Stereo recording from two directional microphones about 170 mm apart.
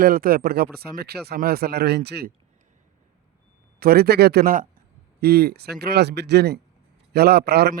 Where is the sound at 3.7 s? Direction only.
65° right (ahead or behind).